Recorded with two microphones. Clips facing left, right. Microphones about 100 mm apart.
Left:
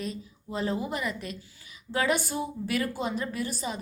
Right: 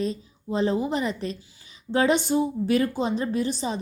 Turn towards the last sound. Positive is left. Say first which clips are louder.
# right 6 dB
turn(degrees=-25)  # may be behind; listen again after turning